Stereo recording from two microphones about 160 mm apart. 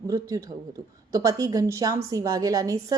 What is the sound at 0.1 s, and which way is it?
A woman's voice, 20° right (ahead or behind).